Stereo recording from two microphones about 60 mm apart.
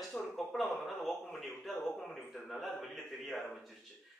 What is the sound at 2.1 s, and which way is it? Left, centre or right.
Speech, centre.